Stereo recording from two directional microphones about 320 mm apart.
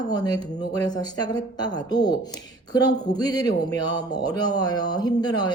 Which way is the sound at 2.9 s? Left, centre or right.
Left.